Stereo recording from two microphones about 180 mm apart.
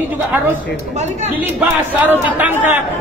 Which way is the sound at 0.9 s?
40° right (ahead or behind).